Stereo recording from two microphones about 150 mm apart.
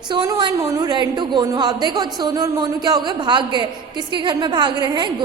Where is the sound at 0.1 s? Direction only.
30° right (ahead or behind).